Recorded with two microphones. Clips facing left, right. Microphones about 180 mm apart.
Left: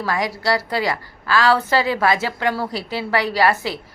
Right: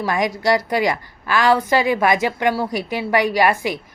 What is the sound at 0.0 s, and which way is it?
A woman's voice, 20° right (ahead or behind).